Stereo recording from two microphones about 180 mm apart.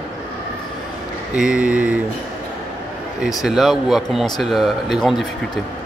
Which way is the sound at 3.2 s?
Centre (ahead or behind).